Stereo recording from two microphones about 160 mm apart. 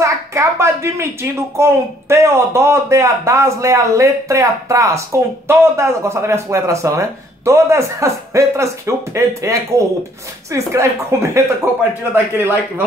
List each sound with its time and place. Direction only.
0.0 s a woman's voice: 20° right (ahead or behind)